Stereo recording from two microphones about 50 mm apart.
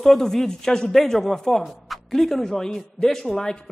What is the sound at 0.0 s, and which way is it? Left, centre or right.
Speech, centre.